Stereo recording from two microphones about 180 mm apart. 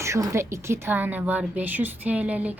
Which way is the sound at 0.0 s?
15° right (ahead or behind).